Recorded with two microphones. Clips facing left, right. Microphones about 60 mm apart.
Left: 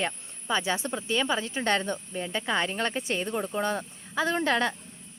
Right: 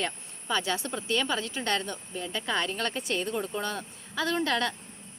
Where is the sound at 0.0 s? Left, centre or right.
Left.